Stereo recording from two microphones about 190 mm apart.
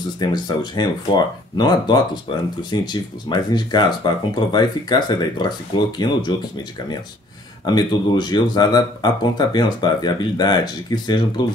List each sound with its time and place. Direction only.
0.2 s speech: 20° left (ahead or behind)
7.6 s speech: 20° left (ahead or behind)